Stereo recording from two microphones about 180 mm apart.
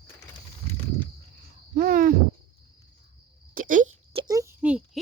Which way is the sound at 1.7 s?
50° right (ahead or behind).